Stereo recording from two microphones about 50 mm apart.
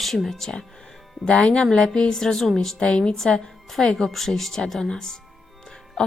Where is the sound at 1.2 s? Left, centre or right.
Left.